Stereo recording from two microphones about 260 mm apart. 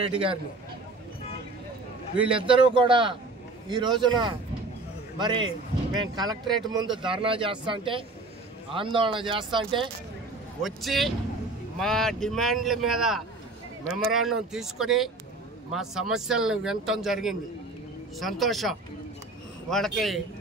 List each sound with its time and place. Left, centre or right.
2.3 s speech: centre
10.6 s a man's voice: centre